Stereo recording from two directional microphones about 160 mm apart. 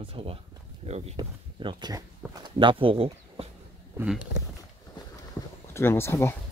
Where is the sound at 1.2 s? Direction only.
30° right (ahead or behind).